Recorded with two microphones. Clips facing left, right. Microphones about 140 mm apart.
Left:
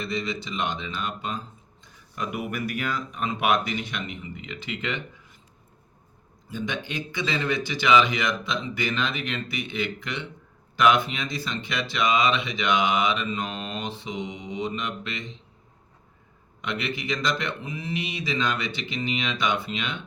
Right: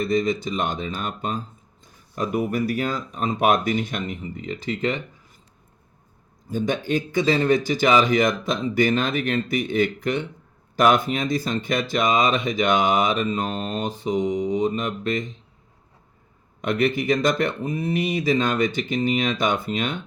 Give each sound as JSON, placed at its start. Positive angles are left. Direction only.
{"t": 0.0, "sound": "speech", "side_deg": -45}
{"t": 6.5, "sound": "speech", "side_deg": -45}
{"t": 16.6, "sound": "speech", "side_deg": -50}